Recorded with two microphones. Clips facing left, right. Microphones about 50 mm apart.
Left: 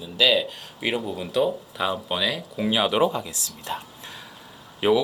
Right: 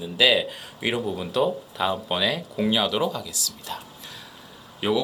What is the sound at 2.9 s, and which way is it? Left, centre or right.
Speech, left.